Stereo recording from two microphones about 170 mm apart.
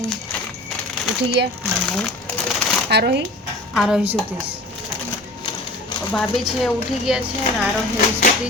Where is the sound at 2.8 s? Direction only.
75° right (ahead or behind).